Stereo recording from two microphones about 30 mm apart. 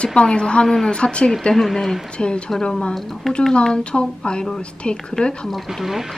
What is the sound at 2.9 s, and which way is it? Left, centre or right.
Speech, centre.